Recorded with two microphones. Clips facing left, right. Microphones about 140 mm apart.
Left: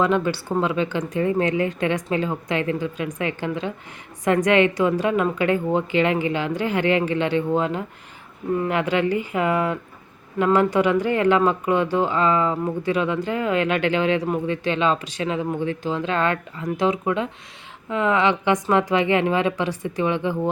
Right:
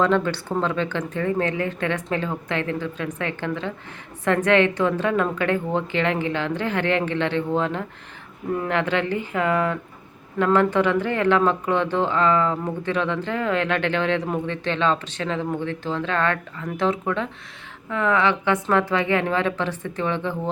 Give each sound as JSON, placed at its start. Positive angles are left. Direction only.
{"t": 0.0, "sound": "speech", "side_deg": 10}